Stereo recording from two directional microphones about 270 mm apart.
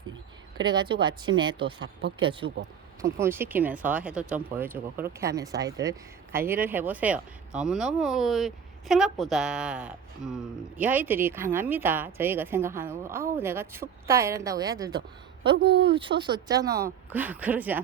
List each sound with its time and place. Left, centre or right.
0.5 s speech: centre
15.5 s speech: right
15.9 s speech: centre